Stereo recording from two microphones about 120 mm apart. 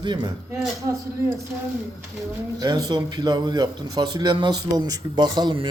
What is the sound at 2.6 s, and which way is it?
Speech, 35° right (ahead or behind).